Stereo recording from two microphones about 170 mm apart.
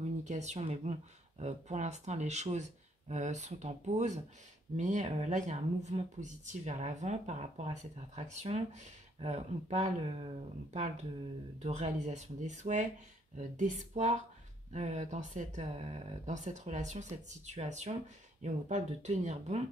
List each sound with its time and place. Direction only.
0.2 s speech: 45° right (ahead or behind)